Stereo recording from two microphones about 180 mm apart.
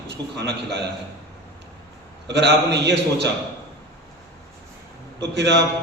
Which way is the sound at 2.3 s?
70° right (ahead or behind).